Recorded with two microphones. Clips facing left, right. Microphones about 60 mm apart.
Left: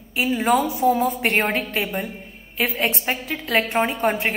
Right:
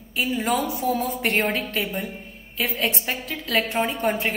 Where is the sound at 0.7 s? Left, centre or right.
Centre.